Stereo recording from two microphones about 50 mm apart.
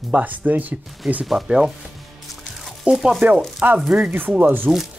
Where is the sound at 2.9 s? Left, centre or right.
Centre.